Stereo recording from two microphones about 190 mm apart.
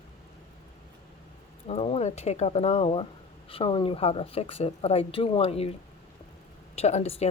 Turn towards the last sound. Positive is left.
turn(degrees=35)  # may be behind; listen again after turning